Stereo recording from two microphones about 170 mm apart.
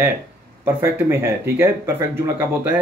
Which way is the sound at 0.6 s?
15° right (ahead or behind).